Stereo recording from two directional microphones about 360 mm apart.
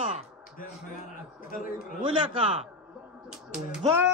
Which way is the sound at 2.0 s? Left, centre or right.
Centre.